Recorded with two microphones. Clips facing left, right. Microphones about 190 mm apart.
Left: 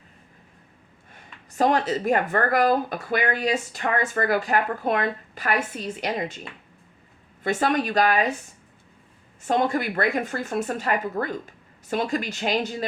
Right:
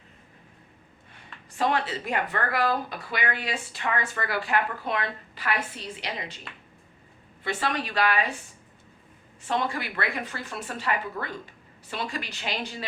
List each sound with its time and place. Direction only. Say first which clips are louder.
1.1 s speech: left 10 dB; 45° left (ahead or behind)
7.4 s speech: left 6 dB; 45° left (ahead or behind)
9.5 s speech: left 6 dB; 45° left (ahead or behind)